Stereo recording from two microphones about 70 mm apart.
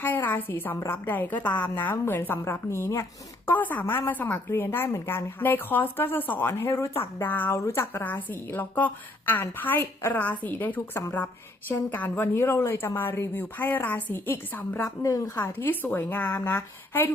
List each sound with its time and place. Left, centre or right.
0.0 s a woman's voice: left
2.4 s a woman's voice: left
3.4 s a woman's voice: left
7.5 s a woman's voice: left
14.8 s a woman's voice: left
15.4 s a woman's voice: left